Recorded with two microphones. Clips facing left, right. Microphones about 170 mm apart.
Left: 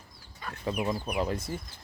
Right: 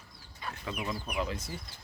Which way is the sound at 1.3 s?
55° left (ahead or behind).